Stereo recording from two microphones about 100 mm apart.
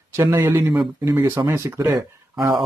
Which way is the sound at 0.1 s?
25° right (ahead or behind).